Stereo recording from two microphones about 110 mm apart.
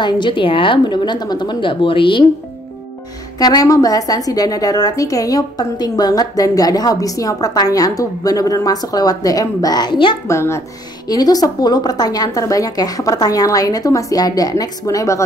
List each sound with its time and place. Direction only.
0.0 s a woman's voice: 45° left (ahead or behind)
3.3 s a woman's voice: 35° left (ahead or behind)
10.2 s speech: 25° left (ahead or behind)
11.1 s a woman's voice: 35° left (ahead or behind)